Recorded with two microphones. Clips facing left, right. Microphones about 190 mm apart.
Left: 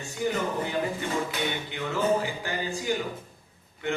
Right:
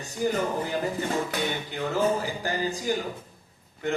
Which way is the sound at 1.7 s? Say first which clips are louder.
Right 1 dB; 40° right (ahead or behind).